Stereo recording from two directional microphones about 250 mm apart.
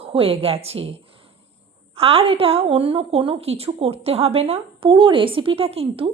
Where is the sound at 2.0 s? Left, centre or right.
Right.